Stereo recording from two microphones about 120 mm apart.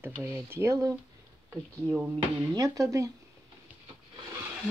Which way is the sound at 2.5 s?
30° right (ahead or behind).